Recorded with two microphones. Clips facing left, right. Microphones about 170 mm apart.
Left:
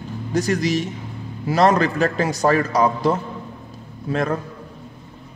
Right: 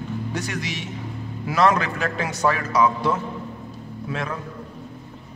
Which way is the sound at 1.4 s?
30° left (ahead or behind).